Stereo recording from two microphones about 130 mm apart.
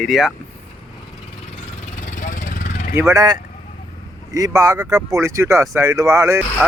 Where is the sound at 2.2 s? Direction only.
90° left.